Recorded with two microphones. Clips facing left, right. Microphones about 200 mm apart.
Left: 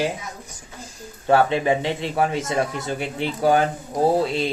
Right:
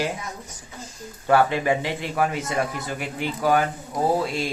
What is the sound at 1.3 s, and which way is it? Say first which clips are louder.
A man's voice: left 2 dB; 25° left (ahead or behind).